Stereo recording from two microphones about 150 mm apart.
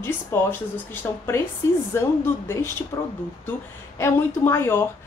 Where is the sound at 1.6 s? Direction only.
20° left (ahead or behind).